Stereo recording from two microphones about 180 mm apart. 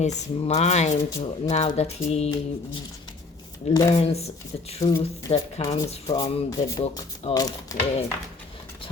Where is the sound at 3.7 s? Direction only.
20° left (ahead or behind).